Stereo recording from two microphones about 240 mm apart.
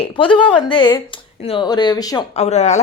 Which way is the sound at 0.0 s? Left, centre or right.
Left.